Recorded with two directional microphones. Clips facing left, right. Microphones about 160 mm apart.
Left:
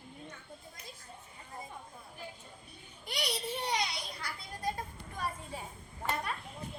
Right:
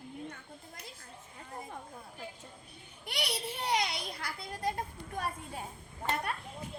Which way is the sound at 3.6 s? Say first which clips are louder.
Right 6 dB; 60° right (ahead or behind).